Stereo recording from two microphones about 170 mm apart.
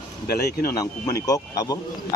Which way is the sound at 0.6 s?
20° left (ahead or behind).